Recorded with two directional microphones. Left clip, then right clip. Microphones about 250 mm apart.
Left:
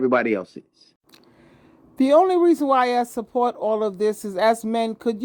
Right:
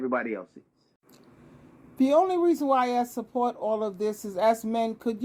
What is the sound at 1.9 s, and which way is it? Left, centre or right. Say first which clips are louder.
Speech: left 6 dB; left.